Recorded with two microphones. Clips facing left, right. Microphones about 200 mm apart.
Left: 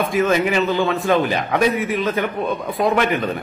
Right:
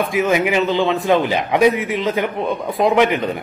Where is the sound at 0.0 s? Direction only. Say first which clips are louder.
Even; 15° right (ahead or behind).